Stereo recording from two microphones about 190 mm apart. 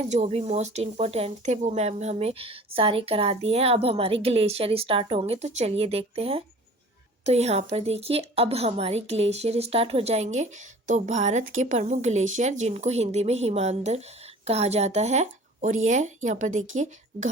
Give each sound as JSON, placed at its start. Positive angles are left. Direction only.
{"t": 0.0, "sound": "a woman's voice", "side_deg": -35}